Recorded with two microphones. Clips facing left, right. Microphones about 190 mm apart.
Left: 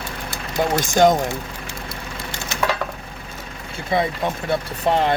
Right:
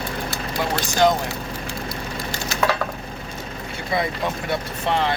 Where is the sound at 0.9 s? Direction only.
45° left (ahead or behind).